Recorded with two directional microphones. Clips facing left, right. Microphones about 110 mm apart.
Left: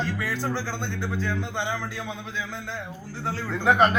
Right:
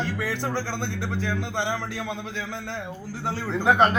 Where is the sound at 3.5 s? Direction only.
15° right (ahead or behind).